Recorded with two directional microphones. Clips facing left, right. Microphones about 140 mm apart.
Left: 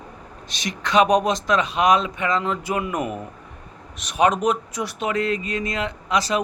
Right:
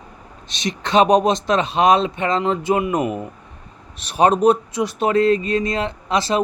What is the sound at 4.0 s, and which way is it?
Speech, 30° right (ahead or behind).